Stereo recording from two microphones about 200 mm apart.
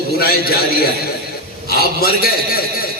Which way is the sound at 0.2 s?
50° left (ahead or behind).